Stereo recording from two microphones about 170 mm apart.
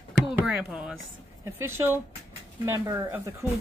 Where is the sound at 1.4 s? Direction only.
15° right (ahead or behind).